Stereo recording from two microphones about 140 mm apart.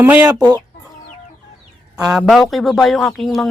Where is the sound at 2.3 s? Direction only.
Centre (ahead or behind).